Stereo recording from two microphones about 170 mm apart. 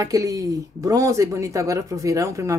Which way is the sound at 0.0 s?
20° right (ahead or behind).